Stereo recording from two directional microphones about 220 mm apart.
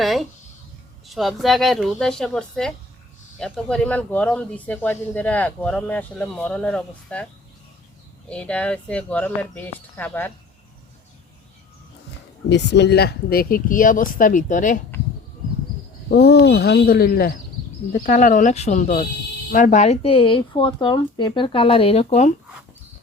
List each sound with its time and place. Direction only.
0.0 s speech: centre (ahead or behind)
8.3 s speech: 5° left (ahead or behind)
12.5 s speech: 50° left (ahead or behind)
16.0 s speech: 50° left (ahead or behind); by 22.3 s 30° left (ahead or behind)